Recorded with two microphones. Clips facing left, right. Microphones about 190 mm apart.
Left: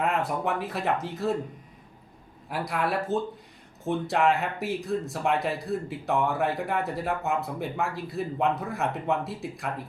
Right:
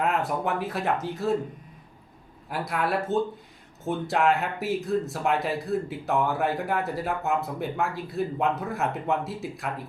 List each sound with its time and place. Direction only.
0.0 s speech: centre (ahead or behind)
2.5 s speech: centre (ahead or behind)